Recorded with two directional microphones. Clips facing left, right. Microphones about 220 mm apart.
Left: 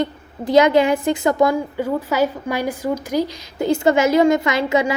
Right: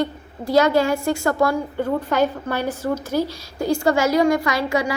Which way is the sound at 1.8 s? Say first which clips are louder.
Right 1 dB; 5° left (ahead or behind).